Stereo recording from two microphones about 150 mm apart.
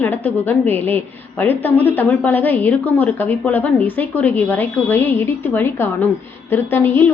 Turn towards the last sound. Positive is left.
turn(degrees=15)  # may be behind; listen again after turning